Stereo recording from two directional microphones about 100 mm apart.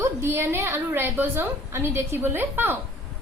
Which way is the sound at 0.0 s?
25° right (ahead or behind).